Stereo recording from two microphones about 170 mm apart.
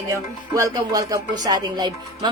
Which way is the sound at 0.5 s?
20° right (ahead or behind).